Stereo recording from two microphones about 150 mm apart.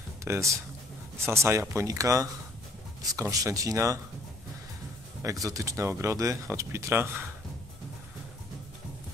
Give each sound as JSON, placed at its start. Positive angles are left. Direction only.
{"t": 0.2, "sound": "speech", "side_deg": -20}
{"t": 5.2, "sound": "speech", "side_deg": -20}